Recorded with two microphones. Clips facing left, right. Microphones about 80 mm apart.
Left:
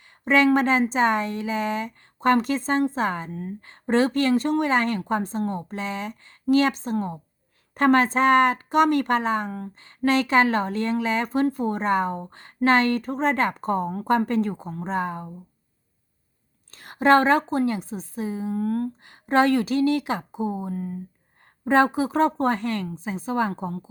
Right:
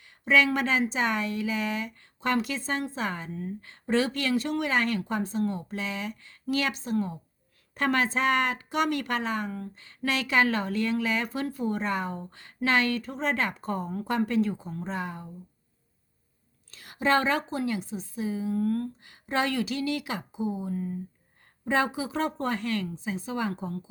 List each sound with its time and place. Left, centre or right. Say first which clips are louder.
0.3 s a woman's voice: left 5 dB; left
16.7 s a woman's voice: left 7 dB; left